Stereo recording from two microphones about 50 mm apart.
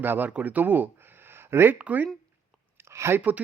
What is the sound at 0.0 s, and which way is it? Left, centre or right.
Speech, right.